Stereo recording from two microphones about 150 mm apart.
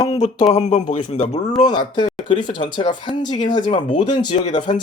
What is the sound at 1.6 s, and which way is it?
Speech, 30° left (ahead or behind).